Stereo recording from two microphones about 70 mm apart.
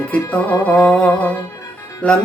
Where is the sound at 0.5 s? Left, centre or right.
Left.